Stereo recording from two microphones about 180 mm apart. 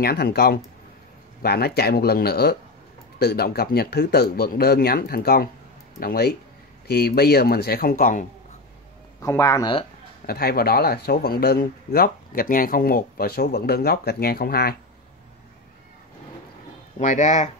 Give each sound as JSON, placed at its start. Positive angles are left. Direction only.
{"t": 0.0, "sound": "speech", "side_deg": 60}
{"t": 9.2, "sound": "speech", "side_deg": 15}
{"t": 10.2, "sound": "speech", "side_deg": 60}
{"t": 17.0, "sound": "speech", "side_deg": 40}